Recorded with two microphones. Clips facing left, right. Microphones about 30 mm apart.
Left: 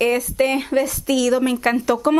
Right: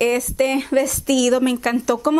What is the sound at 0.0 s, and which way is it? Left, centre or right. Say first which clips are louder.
A woman's voice: even; centre.